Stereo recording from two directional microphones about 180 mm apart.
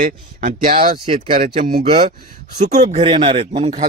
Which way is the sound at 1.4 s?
50° right (ahead or behind).